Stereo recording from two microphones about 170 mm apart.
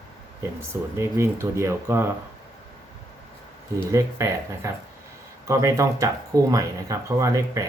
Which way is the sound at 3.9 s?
20° right (ahead or behind).